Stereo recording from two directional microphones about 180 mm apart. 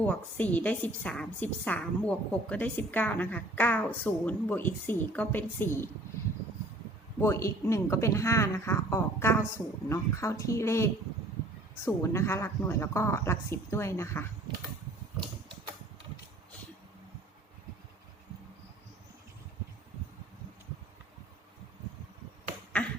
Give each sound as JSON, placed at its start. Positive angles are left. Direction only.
{"t": 0.0, "sound": "a woman's voice", "side_deg": 10}
{"t": 7.2, "sound": "a woman's voice", "side_deg": 15}
{"t": 11.9, "sound": "a woman's voice", "side_deg": 15}
{"t": 22.8, "sound": "beatboxing", "side_deg": 5}